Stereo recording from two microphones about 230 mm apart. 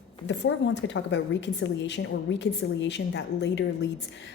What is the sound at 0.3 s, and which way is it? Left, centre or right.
A woman's voice, left.